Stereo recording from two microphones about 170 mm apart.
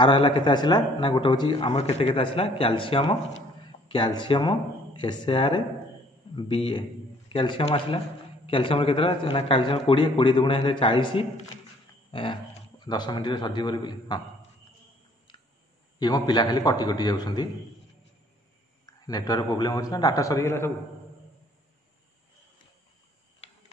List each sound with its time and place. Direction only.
0.0 s a man's voice: 25° left (ahead or behind)
1.7 s a man's voice: 40° left (ahead or behind)
16.0 s a man's voice: 25° left (ahead or behind)
18.9 s a man's voice: 20° left (ahead or behind)